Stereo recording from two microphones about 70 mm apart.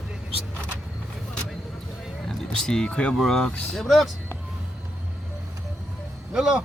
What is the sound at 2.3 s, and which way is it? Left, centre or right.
Speech, centre.